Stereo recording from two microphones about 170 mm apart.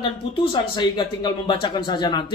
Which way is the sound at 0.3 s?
30° left (ahead or behind).